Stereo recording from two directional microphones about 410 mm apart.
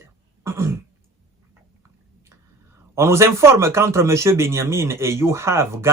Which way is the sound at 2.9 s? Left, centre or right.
Centre.